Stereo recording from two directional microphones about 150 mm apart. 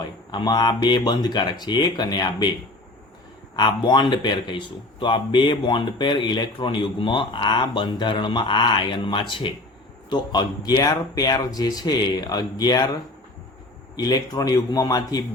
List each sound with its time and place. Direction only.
0.3 s speech: 30° left (ahead or behind)
3.5 s speech: 30° left (ahead or behind)